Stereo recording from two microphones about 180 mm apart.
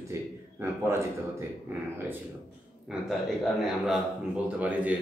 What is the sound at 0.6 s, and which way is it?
A man's voice, 15° right (ahead or behind).